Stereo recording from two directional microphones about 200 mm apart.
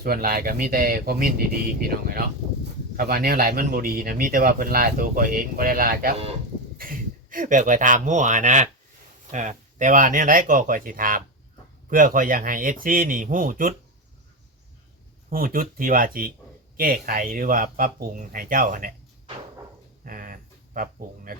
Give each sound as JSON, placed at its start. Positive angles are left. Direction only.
{"t": 0.0, "sound": "speech", "side_deg": -45}
{"t": 15.3, "sound": "speech", "side_deg": -45}
{"t": 20.1, "sound": "a sound", "side_deg": -40}